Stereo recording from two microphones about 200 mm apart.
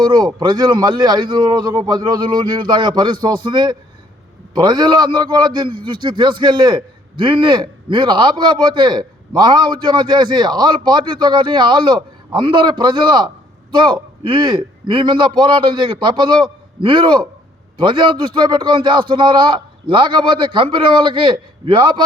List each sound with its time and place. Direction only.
0.0 s a man's voice: 20° right (ahead or behind)